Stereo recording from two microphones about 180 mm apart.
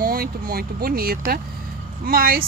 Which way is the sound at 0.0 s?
55° right (ahead or behind).